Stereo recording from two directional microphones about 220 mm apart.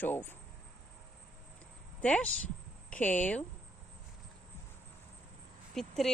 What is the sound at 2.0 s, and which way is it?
Speech, 5° left (ahead or behind).